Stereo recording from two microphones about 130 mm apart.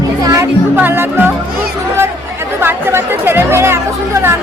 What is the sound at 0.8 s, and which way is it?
Speech, 15° right (ahead or behind).